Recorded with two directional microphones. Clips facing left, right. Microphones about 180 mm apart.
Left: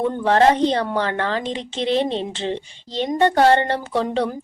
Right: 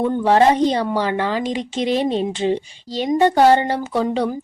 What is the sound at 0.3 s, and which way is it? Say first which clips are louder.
Speech: right 1 dB; 10° right (ahead or behind).